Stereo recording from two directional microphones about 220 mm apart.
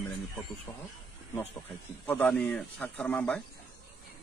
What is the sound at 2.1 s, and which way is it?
Speech, 5° left (ahead or behind).